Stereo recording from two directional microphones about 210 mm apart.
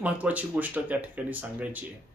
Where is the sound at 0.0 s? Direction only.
5° right (ahead or behind).